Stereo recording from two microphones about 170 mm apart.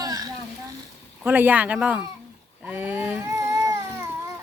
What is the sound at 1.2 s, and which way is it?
Speech, 10° right (ahead or behind).